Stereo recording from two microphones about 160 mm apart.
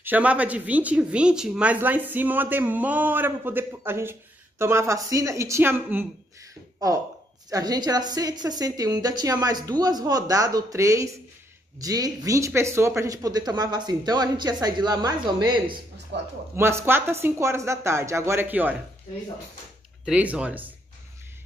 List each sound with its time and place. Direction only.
0.0 s a woman's voice: 10° right (ahead or behind)
7.4 s speech: 25° right (ahead or behind)
16.1 s speech: 90° right
16.5 s a woman's voice: 15° right (ahead or behind)
20.1 s a woman's voice: 5° right (ahead or behind)